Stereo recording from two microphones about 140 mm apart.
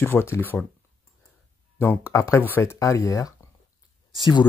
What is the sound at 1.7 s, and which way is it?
Speech, 15° left (ahead or behind).